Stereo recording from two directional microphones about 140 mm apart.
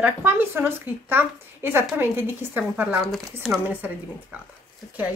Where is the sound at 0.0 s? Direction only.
15° right (ahead or behind).